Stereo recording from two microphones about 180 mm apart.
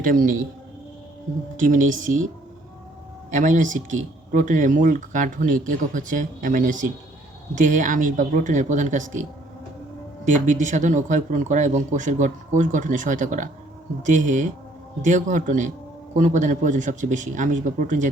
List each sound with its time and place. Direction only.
0.0 s speech: 50° right (ahead or behind)
1.5 s speech: 45° right (ahead or behind)
3.3 s speech: 45° right (ahead or behind)
10.2 s speech: 45° right (ahead or behind)